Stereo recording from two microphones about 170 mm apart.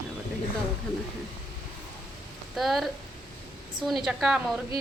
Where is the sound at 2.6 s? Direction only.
Centre (ahead or behind).